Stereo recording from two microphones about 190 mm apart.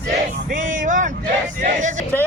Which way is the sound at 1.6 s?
40° right (ahead or behind).